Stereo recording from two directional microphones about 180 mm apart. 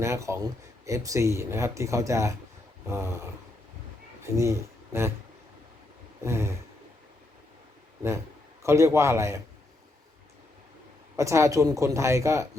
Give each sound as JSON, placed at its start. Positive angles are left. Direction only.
{"t": 0.0, "sound": "speech", "side_deg": -15}
{"t": 4.2, "sound": "speech", "side_deg": -15}
{"t": 6.2, "sound": "speech", "side_deg": -15}
{"t": 8.6, "sound": "speech", "side_deg": -15}
{"t": 11.2, "sound": "speech", "side_deg": -15}